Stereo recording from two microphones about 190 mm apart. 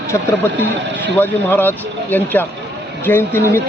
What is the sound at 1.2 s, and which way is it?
Speech, 10° left (ahead or behind).